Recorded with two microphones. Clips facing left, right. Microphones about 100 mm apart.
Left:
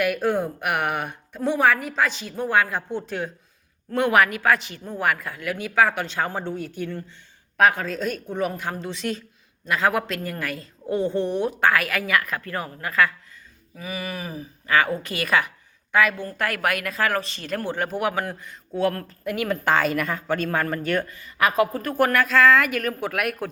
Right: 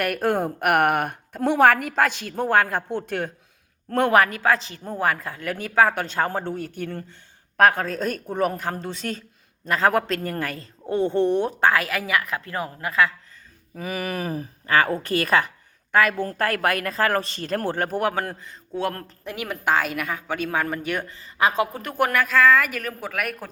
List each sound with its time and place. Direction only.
0.0 s a woman's voice: 50° right (ahead or behind)
3.9 s a woman's voice: 40° right (ahead or behind); by 13.1 s 20° right (ahead or behind)
13.7 s a woman's voice: 55° right (ahead or behind)
14.7 s a woman's voice: 40° right (ahead or behind)
18.8 s a woman's voice: 25° right (ahead or behind)
19.6 s speech: 5° right (ahead or behind)
21.1 s speech: 30° right (ahead or behind); by 23.5 s 5° left (ahead or behind)